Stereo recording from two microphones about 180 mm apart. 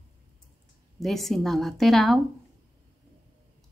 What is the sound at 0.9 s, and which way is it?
Speech, centre (ahead or behind).